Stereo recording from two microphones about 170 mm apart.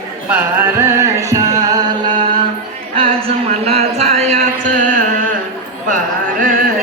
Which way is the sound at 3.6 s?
40° right (ahead or behind).